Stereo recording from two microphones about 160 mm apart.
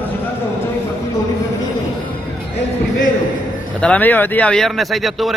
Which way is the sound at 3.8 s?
10° left (ahead or behind).